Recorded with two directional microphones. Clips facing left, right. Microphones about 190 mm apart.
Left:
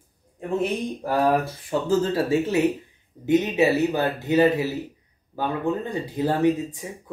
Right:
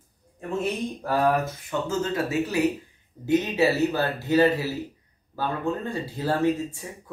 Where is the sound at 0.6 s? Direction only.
20° left (ahead or behind).